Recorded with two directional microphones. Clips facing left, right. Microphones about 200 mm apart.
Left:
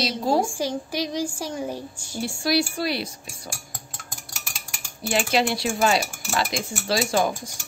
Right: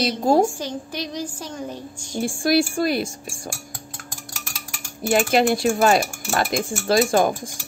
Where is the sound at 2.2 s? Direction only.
50° right (ahead or behind).